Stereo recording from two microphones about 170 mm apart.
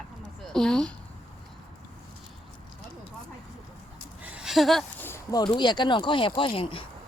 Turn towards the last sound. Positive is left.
turn(degrees=30)  # may be behind; listen again after turning